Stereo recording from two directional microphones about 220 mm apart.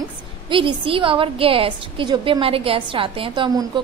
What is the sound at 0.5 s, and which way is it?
A woman's voice, 25° right (ahead or behind).